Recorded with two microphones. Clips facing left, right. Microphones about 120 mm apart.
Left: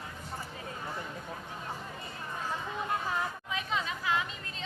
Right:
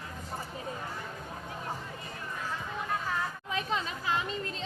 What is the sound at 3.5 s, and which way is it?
Chatter, 40° right (ahead or behind).